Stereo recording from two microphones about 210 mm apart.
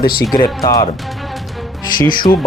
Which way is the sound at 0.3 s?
20° left (ahead or behind).